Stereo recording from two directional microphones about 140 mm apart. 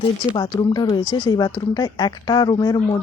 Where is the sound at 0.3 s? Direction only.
30° left (ahead or behind).